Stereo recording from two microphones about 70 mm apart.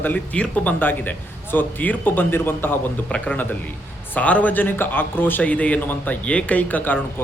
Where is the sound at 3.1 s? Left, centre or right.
Centre.